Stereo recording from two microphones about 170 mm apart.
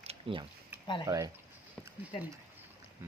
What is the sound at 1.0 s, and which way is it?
Speech, 20° right (ahead or behind).